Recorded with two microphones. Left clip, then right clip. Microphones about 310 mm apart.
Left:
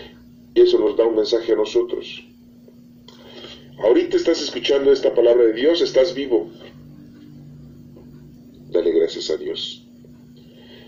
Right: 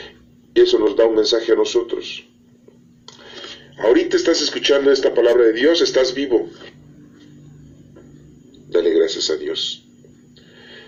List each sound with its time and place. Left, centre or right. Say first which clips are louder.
0.5 s a man's voice: right 1 dB; right
8.7 s a man's voice: right 2 dB; right